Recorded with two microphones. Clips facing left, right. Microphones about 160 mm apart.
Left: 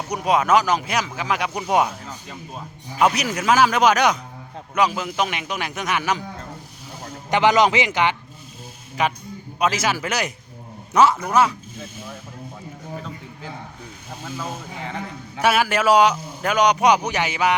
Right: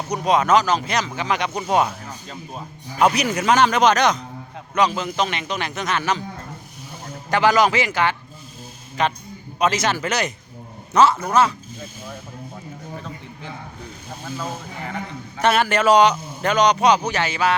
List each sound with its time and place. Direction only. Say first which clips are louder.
0.1 s a man's voice: right 1 dB; 10° left (ahead or behind)
3.0 s a man's voice: right 1 dB; centre (ahead or behind)
7.3 s a man's voice: even; 20° left (ahead or behind)
15.4 s a man's voice: right 1 dB; 5° left (ahead or behind)